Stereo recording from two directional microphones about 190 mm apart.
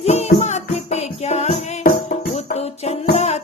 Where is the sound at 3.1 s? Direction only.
35° left (ahead or behind).